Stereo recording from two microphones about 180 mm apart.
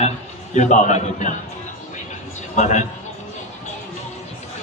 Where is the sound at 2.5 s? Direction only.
40° left (ahead or behind).